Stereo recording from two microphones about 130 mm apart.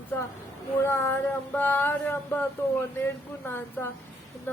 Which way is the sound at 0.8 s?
20° left (ahead or behind).